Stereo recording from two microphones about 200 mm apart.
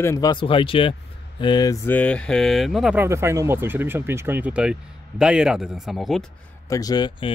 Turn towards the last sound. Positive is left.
turn(degrees=20)  # may be behind; listen again after turning